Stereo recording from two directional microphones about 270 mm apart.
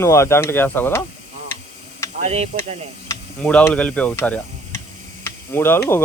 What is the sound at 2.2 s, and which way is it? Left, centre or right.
Speech, right.